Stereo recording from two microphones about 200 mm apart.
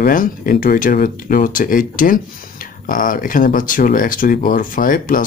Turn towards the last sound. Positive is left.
turn(degrees=45)  # may be behind; listen again after turning